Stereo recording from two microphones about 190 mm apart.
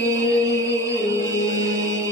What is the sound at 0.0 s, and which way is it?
Music, 20° right (ahead or behind).